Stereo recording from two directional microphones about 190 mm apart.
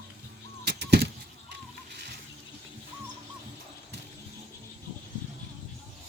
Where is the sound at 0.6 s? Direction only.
60° right (ahead or behind).